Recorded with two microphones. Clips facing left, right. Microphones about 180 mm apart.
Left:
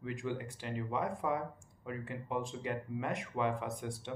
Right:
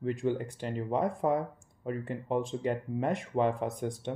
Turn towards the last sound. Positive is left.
turn(degrees=-35)  # may be behind; listen again after turning